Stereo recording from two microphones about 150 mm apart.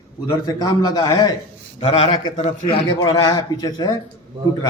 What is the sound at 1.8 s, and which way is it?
A man's voice, 40° left (ahead or behind).